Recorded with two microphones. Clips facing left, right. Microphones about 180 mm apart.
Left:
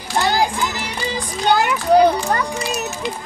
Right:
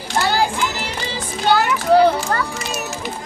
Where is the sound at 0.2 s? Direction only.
15° left (ahead or behind).